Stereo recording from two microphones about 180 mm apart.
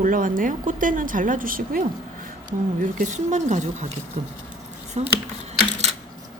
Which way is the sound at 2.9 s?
45° right (ahead or behind).